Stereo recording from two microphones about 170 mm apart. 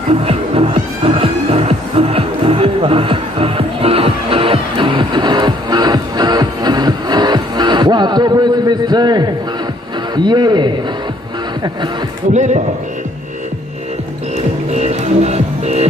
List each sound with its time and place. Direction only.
0.1 s music: 35° right (ahead or behind)
10.1 s a man's voice: 25° right (ahead or behind)
12.3 s speech: 45° right (ahead or behind)
14.7 s music: 40° right (ahead or behind)